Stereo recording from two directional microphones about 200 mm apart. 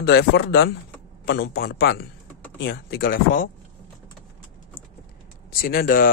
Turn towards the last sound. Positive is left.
turn(degrees=45)  # may be behind; listen again after turning